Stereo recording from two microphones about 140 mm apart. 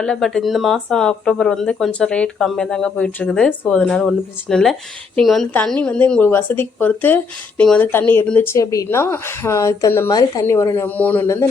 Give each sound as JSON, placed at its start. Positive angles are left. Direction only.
{"t": 0.0, "sound": "a woman's voice", "side_deg": 5}
{"t": 10.8, "sound": "a woman's voice", "side_deg": 10}